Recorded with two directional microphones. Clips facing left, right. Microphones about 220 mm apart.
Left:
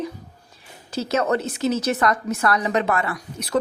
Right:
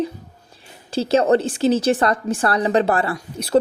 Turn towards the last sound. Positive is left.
turn(degrees=-30)  # may be behind; listen again after turning